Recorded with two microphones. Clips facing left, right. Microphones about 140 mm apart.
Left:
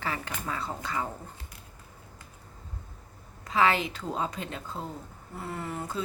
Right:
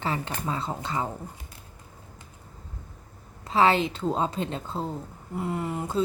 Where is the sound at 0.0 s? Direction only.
25° right (ahead or behind).